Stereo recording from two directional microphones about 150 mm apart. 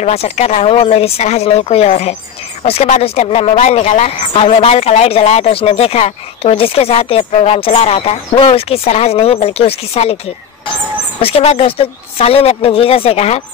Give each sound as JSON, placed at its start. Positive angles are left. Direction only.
{"t": 0.0, "sound": "speech", "side_deg": 45}
{"t": 3.5, "sound": "speech", "side_deg": 50}
{"t": 11.1, "sound": "speech", "side_deg": 40}